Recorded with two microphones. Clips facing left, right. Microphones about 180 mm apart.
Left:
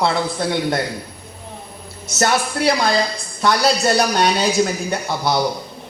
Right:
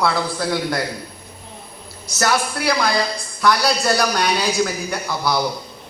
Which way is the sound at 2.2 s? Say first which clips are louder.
Left 2 dB; 25° left (ahead or behind).